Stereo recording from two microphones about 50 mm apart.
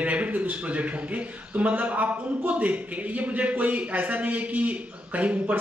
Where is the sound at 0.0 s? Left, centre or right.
Right.